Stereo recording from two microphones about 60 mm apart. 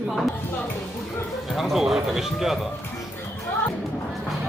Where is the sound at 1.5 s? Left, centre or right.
Centre.